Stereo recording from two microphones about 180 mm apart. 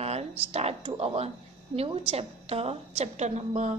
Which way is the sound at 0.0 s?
35° right (ahead or behind).